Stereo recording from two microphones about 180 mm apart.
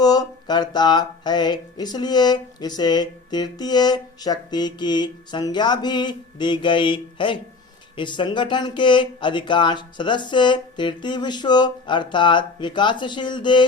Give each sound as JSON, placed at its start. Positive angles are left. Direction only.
{"t": 0.0, "sound": "speech", "side_deg": 20}